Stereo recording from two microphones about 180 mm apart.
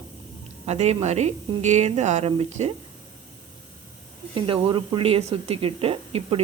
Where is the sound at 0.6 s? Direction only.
35° right (ahead or behind).